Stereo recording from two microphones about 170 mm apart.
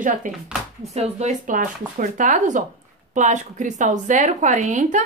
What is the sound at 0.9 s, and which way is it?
A woman's voice, 40° right (ahead or behind).